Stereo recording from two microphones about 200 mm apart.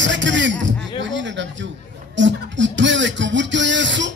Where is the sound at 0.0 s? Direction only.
65° right (ahead or behind).